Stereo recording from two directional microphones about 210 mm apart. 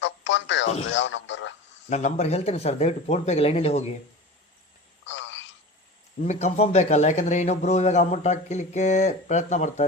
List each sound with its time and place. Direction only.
0.0 s music: 60° left (ahead or behind)
0.9 s radio: 60° left (ahead or behind)
1.9 s speech: 35° left (ahead or behind)
5.0 s telephone: 60° left (ahead or behind)
6.2 s a man's voice: 35° left (ahead or behind)